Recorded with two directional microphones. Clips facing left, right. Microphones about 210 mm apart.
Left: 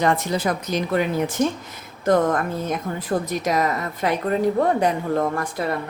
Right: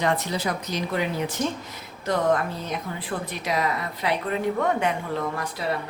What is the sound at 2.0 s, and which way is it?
Speech, 50° left (ahead or behind).